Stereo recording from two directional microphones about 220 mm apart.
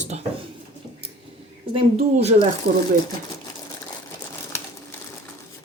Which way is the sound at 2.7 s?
45° right (ahead or behind).